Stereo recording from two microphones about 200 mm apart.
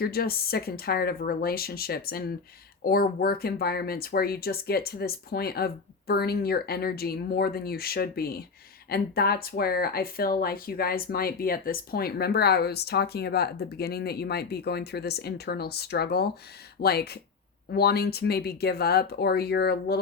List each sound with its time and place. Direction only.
0.0 s speech: 50° left (ahead or behind)